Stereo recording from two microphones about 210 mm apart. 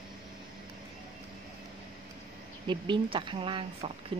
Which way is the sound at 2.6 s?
25° right (ahead or behind).